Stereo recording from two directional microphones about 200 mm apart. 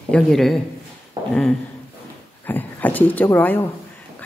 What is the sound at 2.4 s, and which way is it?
A woman's voice, 10° left (ahead or behind).